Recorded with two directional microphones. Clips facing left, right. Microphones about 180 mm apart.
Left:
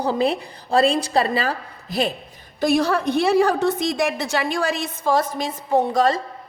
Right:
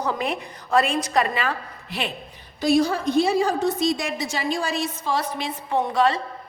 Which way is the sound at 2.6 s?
60° left (ahead or behind).